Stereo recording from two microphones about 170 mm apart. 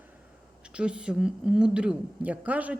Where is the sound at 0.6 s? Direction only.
5° right (ahead or behind).